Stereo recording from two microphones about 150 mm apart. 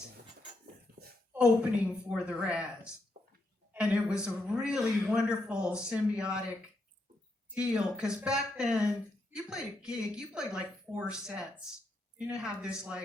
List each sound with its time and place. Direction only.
0.6 s a sound: 90° right
1.3 s a man's voice: 5° right (ahead or behind)
7.5 s a man's voice: 5° right (ahead or behind)
12.1 s a man's voice: 5° right (ahead or behind)